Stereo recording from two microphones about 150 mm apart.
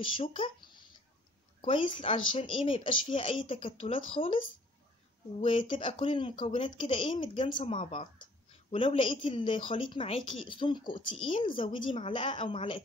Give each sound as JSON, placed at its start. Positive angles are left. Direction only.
{"t": 0.2, "sound": "a woman's voice", "side_deg": 40}
{"t": 1.6, "sound": "a woman's voice", "side_deg": 35}